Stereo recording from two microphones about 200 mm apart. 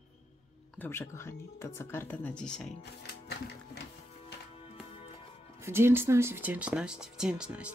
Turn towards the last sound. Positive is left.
turn(degrees=-5)  # may be behind; listen again after turning